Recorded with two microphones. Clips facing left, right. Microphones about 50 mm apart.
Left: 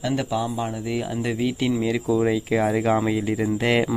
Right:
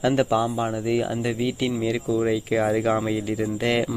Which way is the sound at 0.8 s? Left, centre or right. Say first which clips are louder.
Right 3 dB; centre.